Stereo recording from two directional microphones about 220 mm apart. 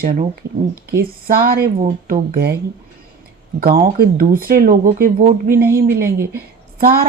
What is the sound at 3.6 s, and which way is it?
Speech, 45° right (ahead or behind).